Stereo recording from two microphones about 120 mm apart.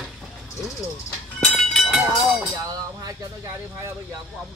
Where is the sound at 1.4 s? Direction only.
Centre (ahead or behind).